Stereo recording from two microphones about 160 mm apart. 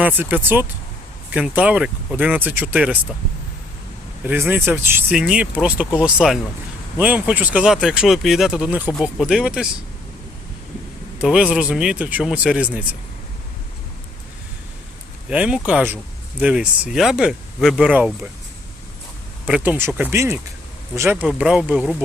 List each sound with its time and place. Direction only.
0.0 s speech: 10° right (ahead or behind)
4.3 s speech: 15° right (ahead or behind)
11.2 s speech: 5° right (ahead or behind)
15.3 s speech: 5° right (ahead or behind)
19.5 s speech: 10° right (ahead or behind)
21.2 s speech: 5° right (ahead or behind)